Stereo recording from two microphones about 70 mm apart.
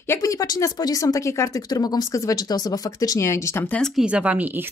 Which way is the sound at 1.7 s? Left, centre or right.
Left.